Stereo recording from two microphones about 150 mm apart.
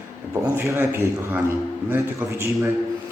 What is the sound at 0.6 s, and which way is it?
A man's voice, 15° right (ahead or behind).